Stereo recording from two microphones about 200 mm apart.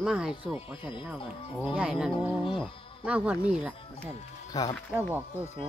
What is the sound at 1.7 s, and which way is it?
Speech, 5° right (ahead or behind).